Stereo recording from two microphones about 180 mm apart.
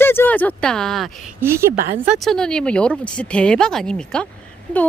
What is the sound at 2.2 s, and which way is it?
Speech, centre (ahead or behind).